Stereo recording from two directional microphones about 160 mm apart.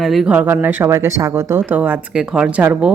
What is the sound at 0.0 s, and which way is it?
Speech, centre (ahead or behind).